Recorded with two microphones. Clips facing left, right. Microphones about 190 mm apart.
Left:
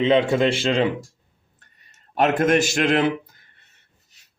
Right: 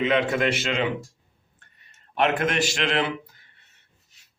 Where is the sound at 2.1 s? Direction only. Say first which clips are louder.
Left 5 dB; 45° left (ahead or behind).